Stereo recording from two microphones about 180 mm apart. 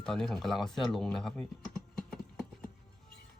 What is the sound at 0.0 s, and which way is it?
Speech, centre (ahead or behind).